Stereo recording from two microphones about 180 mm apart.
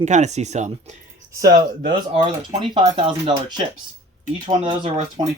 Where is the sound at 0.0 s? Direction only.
40° right (ahead or behind).